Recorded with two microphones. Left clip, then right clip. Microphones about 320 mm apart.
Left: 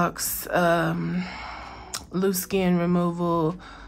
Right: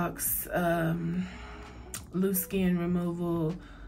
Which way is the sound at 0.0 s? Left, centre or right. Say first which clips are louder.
Left 8 dB; centre.